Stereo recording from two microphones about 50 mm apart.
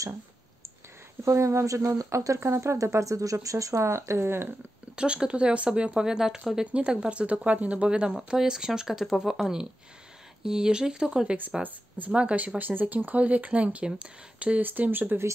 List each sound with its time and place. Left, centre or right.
1.2 s speech: right
4.3 s speech: right
4.9 s speech: centre
6.6 s speech: right
8.1 s speech: centre; by 12.5 s right
12.5 s speech: right
14.6 s speech: right